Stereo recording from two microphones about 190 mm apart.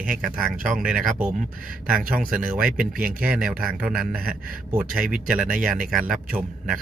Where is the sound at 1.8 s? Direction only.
50° right (ahead or behind).